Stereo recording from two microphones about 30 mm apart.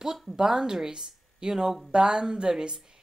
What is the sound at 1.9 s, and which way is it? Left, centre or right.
Speech, right.